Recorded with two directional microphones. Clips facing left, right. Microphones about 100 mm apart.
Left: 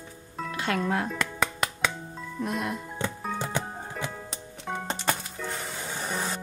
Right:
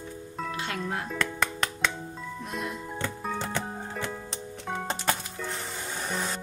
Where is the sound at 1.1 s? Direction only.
10° left (ahead or behind).